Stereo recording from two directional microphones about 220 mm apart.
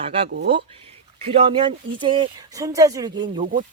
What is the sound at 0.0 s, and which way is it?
Speech, 25° right (ahead or behind).